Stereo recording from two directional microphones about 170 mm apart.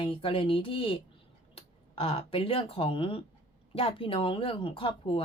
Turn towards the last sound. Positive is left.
turn(degrees=30)  # may be behind; listen again after turning